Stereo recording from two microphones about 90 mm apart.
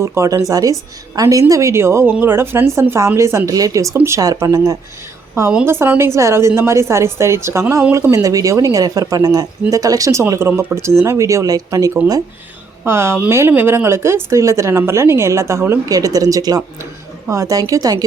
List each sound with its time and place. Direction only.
0.0 s a woman's voice: 35° right (ahead or behind)
4.2 s speech: 40° right (ahead or behind)
5.6 s a woman's voice: 25° right (ahead or behind)
8.1 s speech: 40° right (ahead or behind)
12.8 s a woman's voice: 30° right (ahead or behind)
15.9 s speech: 40° right (ahead or behind)